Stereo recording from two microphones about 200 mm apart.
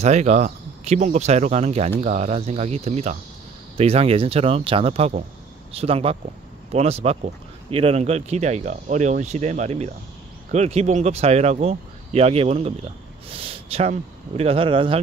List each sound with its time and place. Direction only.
0.0 s speech: 35° right (ahead or behind)